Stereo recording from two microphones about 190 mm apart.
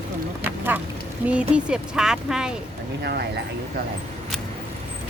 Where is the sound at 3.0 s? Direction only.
55° right (ahead or behind).